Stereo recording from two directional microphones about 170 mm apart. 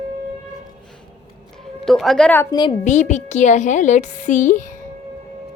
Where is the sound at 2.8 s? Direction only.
45° left (ahead or behind).